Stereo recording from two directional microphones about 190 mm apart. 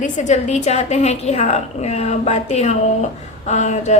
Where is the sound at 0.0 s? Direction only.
40° left (ahead or behind).